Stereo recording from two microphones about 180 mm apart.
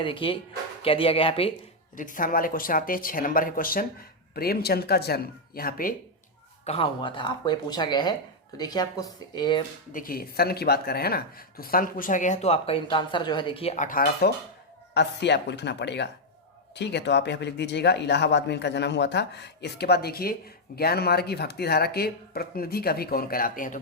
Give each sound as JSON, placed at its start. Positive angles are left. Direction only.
{"t": 0.0, "sound": "speech", "side_deg": 30}
{"t": 2.0, "sound": "speech", "side_deg": 50}
{"t": 6.7, "sound": "speech", "side_deg": 30}
{"t": 9.9, "sound": "speech", "side_deg": 55}
{"t": 14.9, "sound": "speech", "side_deg": 70}